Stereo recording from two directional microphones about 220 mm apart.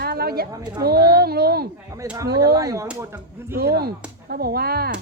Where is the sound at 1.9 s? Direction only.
15° right (ahead or behind).